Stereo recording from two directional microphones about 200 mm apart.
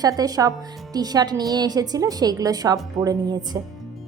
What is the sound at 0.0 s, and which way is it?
A woman's voice, 20° right (ahead or behind).